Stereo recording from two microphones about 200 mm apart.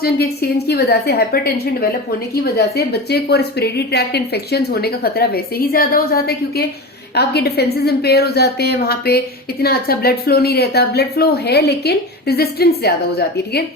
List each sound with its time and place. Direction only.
0.7 s a woman's voice: 55° left (ahead or behind)